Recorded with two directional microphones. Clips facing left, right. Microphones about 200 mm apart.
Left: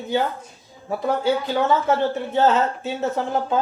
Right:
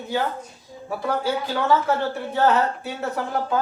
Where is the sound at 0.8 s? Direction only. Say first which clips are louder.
Left 3 dB; 20° left (ahead or behind).